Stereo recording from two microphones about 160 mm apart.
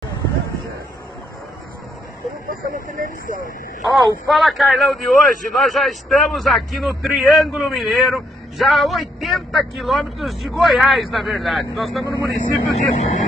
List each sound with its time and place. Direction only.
2.5 s speech: 60° right (ahead or behind)
3.8 s a man's voice: centre (ahead or behind)
12.1 s speech: 25° left (ahead or behind)
12.9 s speech: 45° left (ahead or behind)